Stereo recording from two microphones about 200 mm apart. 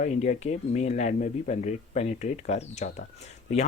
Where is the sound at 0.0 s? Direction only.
35° left (ahead or behind).